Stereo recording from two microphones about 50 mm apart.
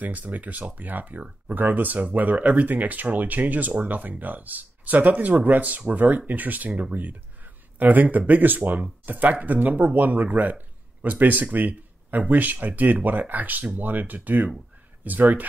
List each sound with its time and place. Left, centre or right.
0.0 s speech: right